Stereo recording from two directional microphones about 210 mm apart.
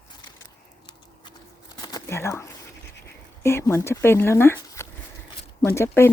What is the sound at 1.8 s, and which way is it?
Crumpling, 15° left (ahead or behind).